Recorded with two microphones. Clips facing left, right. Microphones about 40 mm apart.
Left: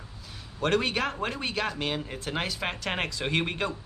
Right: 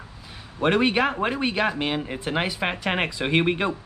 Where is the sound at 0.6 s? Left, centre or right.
Right.